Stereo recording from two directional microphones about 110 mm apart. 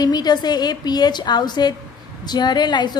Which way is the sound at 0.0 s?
40° left (ahead or behind).